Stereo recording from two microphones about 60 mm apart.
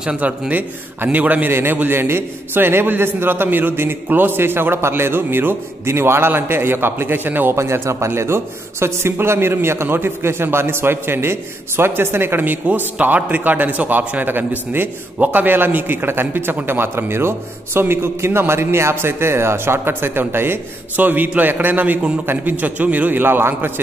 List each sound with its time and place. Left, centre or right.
0.2 s a man's voice: right
7.5 s a man's voice: right
12.6 s a man's voice: right
21.0 s a man's voice: right